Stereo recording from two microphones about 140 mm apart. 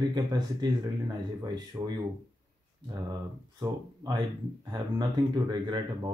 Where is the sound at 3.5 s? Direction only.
30° right (ahead or behind).